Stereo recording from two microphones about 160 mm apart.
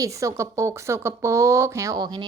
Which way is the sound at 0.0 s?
20° right (ahead or behind).